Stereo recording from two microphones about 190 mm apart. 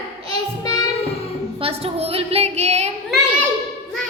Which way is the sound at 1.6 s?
30° right (ahead or behind).